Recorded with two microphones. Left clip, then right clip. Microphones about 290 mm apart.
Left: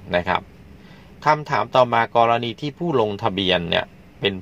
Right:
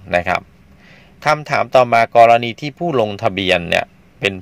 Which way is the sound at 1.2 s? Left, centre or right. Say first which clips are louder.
Right 3 dB; right.